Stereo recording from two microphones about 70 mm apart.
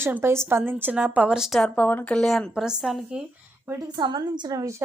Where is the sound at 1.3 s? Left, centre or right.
Centre.